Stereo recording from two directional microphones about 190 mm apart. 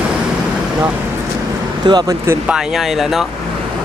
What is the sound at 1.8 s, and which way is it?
Speech, 20° right (ahead or behind).